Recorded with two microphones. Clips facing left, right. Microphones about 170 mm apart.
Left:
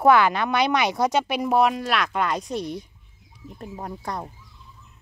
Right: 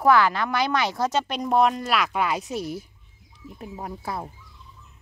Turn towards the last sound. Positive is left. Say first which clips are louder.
# even
turn(degrees=-5)  # may be behind; listen again after turning